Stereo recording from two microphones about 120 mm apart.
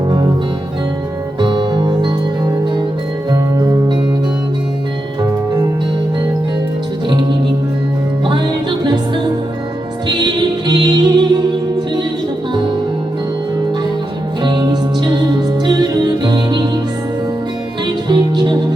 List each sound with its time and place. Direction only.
1.4 s music: 40° right (ahead or behind)
3.2 s music: 30° right (ahead or behind)
8.9 s music: 40° right (ahead or behind)
14.4 s music: 35° right (ahead or behind)
17.8 s music: 40° right (ahead or behind)